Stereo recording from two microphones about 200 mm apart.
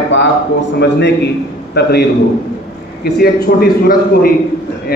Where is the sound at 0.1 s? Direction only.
65° left (ahead or behind).